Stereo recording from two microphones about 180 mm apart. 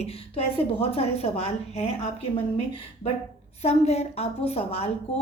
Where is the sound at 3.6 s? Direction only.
35° left (ahead or behind).